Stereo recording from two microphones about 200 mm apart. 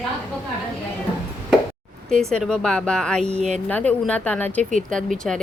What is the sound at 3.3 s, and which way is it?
Speech, 35° right (ahead or behind).